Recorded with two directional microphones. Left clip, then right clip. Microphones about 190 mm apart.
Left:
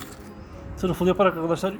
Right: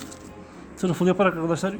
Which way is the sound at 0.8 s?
10° right (ahead or behind).